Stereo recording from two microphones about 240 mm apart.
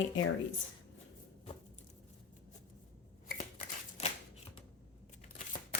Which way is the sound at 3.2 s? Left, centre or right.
Left.